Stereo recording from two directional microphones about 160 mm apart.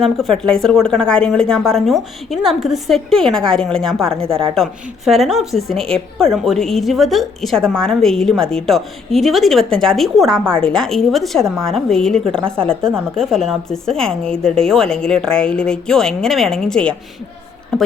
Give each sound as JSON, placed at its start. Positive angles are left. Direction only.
{"t": 0.0, "sound": "a woman's voice", "side_deg": 0}
{"t": 4.1, "sound": "a woman's voice", "side_deg": -35}
{"t": 4.5, "sound": "a woman's voice", "side_deg": 0}